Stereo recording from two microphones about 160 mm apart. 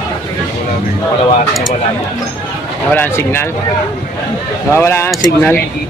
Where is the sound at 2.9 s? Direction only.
15° left (ahead or behind).